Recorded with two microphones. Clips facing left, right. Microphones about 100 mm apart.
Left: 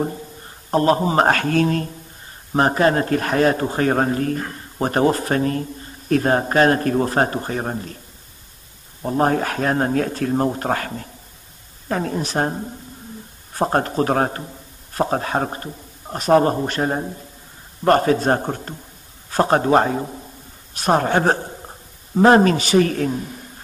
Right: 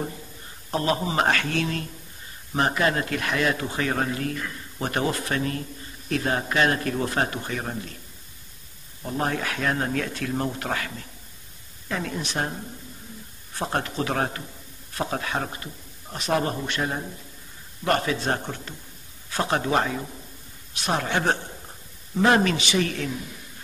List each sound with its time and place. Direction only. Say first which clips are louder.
0.7 s a man's voice: left 8 dB; 40° left (ahead or behind)
9.0 s a man's voice: left 8 dB; 40° left (ahead or behind)